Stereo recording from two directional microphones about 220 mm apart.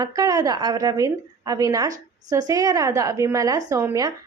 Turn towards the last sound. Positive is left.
turn(degrees=-15)  # may be behind; listen again after turning